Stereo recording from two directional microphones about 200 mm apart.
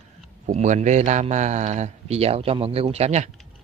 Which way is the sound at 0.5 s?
35° right (ahead or behind).